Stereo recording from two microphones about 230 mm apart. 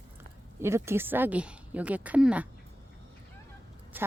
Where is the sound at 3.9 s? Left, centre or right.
Centre.